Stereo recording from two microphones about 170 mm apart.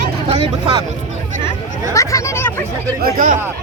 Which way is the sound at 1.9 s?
20° left (ahead or behind).